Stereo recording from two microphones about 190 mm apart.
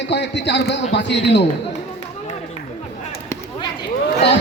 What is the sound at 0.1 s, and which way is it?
A man's voice, 65° left (ahead or behind).